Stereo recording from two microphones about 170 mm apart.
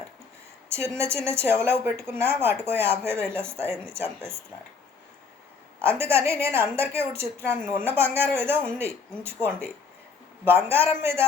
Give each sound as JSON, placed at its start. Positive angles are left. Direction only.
{"t": 0.7, "sound": "a woman's voice", "side_deg": -15}
{"t": 6.0, "sound": "a woman's voice", "side_deg": -15}